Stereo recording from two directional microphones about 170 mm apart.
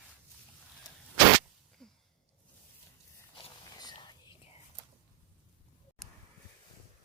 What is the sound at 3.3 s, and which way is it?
Whispering, 25° left (ahead or behind).